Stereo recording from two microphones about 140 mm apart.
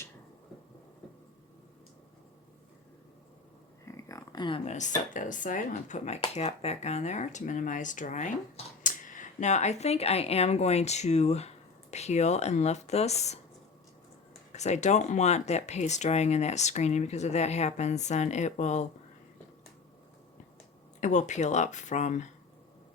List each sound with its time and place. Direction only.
3.8 s a sound: 20° left (ahead or behind)
4.6 s speech: 55° left (ahead or behind)
5.1 s speech: 65° left (ahead or behind)
14.5 s speech: 55° left (ahead or behind)
21.0 s speech: 60° left (ahead or behind)